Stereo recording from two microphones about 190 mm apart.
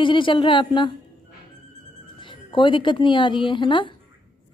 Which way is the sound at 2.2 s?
25° left (ahead or behind).